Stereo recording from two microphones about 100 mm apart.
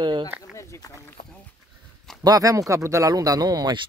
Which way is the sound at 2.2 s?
35° right (ahead or behind).